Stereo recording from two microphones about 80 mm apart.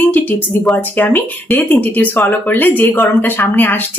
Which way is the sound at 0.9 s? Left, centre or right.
Left.